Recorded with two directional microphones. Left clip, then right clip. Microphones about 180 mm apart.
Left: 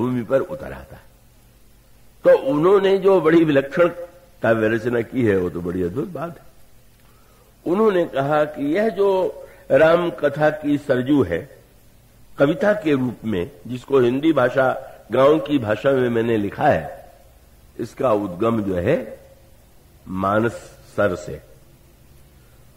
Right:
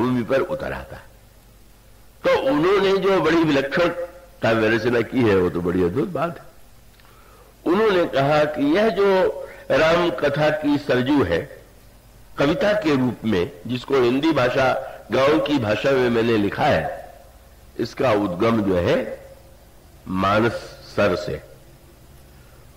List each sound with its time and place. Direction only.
0.0 s a man's voice: 25° right (ahead or behind)
2.3 s a man's voice: 25° right (ahead or behind)
7.6 s a man's voice: 25° right (ahead or behind)